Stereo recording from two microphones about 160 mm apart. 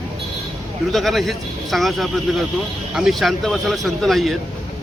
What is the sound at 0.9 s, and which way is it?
Speech, centre (ahead or behind).